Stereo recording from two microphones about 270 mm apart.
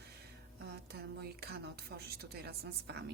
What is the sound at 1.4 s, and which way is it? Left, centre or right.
A woman's voice, right.